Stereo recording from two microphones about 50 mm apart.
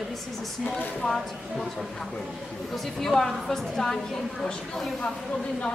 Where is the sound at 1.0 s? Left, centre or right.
Centre.